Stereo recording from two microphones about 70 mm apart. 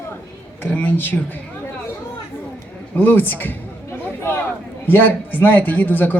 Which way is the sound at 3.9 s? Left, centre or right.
Left.